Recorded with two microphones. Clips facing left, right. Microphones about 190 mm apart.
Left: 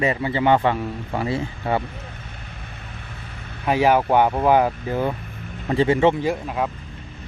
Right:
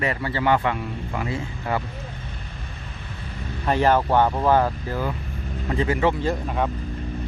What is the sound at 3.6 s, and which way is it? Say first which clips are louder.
Speech: left 2 dB; 10° left (ahead or behind).